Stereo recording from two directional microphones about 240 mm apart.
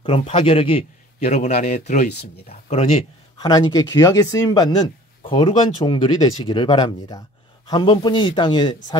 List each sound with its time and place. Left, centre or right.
0.0 s a man's voice: left
3.4 s speech: centre